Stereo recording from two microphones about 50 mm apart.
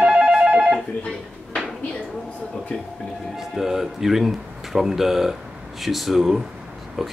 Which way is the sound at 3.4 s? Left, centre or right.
Centre.